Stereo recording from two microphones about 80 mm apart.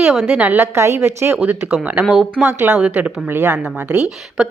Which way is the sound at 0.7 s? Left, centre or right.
Right.